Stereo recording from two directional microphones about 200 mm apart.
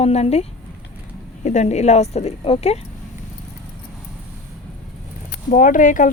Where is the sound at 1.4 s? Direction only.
35° left (ahead or behind).